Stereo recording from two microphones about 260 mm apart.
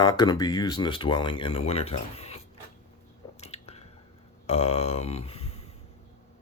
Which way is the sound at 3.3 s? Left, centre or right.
Left.